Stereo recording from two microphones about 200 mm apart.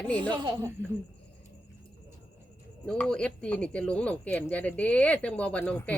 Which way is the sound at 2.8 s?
5° left (ahead or behind).